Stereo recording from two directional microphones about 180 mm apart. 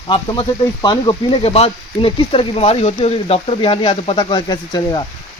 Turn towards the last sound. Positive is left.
turn(degrees=25)  # may be behind; listen again after turning